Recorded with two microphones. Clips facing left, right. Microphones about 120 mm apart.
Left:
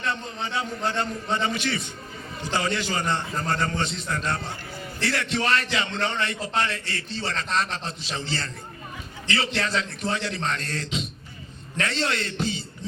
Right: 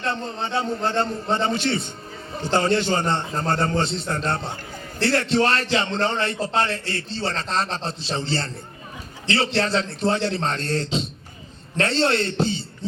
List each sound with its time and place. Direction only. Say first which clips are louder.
0.0 s a man's voice: right 3 dB; 35° right (ahead or behind)